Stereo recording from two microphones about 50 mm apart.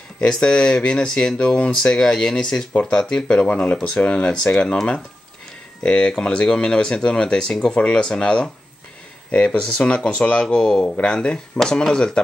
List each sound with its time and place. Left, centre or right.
0.2 s speech: centre
3.4 s speech: left
10.4 s speech: centre